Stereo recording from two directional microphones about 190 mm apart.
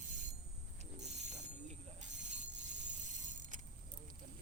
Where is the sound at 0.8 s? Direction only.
35° right (ahead or behind).